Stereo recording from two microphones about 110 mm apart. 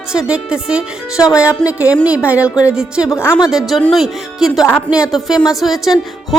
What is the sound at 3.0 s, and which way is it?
Speech, 25° left (ahead or behind).